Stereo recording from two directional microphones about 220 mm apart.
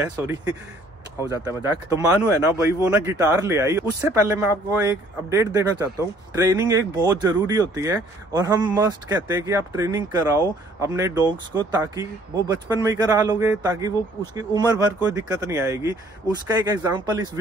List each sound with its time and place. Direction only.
1.3 s speech: 15° right (ahead or behind)